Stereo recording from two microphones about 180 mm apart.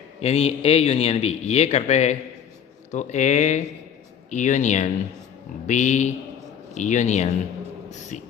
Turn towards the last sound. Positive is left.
turn(degrees=40)  # may be behind; listen again after turning